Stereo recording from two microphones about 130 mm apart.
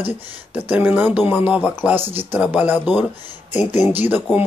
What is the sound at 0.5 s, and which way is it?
Speech, 10° right (ahead or behind).